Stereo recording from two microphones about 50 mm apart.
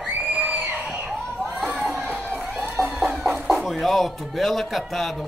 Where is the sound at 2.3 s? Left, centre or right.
Centre.